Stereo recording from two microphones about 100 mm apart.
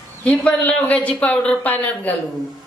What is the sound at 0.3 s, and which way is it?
Speech, 15° left (ahead or behind).